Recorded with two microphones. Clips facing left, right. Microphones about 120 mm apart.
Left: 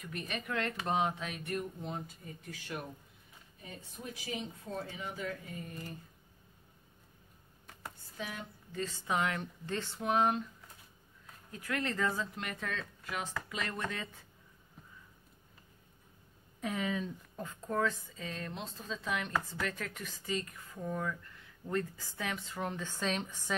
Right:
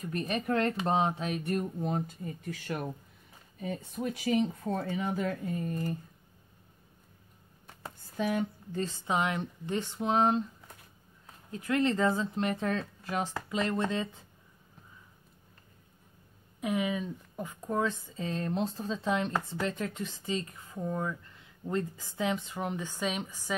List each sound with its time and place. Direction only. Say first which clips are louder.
0.0 s speech: right 8 dB; 40° right (ahead or behind)
3.6 s speech: right 12 dB; 60° right (ahead or behind)
5.4 s speech: right 11 dB; 40° right (ahead or behind)
8.2 s speech: right 12 dB; 50° right (ahead or behind)
8.8 s speech: right 3 dB; 25° right (ahead or behind)
11.5 s speech: right 8 dB; 25° right (ahead or behind)
16.6 s speech: right 4 dB; 15° right (ahead or behind)